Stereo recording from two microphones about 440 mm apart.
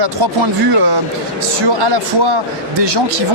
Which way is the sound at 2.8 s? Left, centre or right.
Right.